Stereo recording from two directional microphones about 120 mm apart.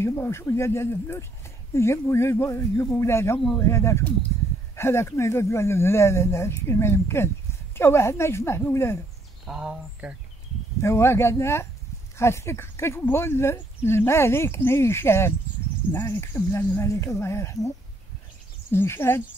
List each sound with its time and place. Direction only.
0.0 s speech: 20° left (ahead or behind)
9.5 s speech: 5° right (ahead or behind)
10.8 s speech: 20° left (ahead or behind)